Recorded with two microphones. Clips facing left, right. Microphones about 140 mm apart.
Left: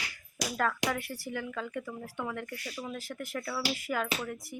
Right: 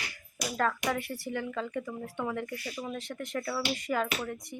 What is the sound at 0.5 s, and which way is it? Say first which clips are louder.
Speech: right 1 dB; centre (ahead or behind).